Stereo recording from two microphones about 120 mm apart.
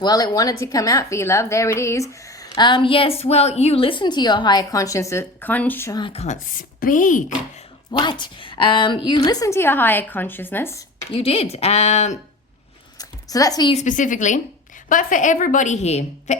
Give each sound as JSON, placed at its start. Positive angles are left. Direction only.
{"t": 0.0, "sound": "a woman's voice", "side_deg": 35}
{"t": 2.6, "sound": "a woman's voice", "side_deg": 40}
{"t": 6.1, "sound": "speech", "side_deg": 75}
{"t": 6.9, "sound": "a woman's voice", "side_deg": 90}
{"t": 7.9, "sound": "a woman's voice", "side_deg": 40}
{"t": 11.1, "sound": "speech", "side_deg": 50}
{"t": 13.0, "sound": "a sound", "side_deg": 30}
{"t": 13.7, "sound": "a woman's voice", "side_deg": 90}